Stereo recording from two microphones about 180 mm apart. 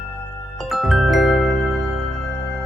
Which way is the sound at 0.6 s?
Centre (ahead or behind).